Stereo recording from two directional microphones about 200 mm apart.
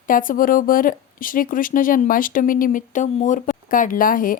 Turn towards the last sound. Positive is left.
turn(degrees=45)  # may be behind; listen again after turning